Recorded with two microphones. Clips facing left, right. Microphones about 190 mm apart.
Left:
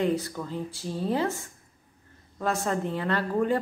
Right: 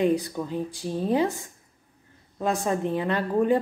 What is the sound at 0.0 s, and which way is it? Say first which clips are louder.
Speech: right 3 dB; 15° right (ahead or behind).